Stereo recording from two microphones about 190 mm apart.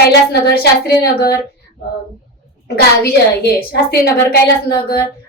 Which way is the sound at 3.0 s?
55° left (ahead or behind).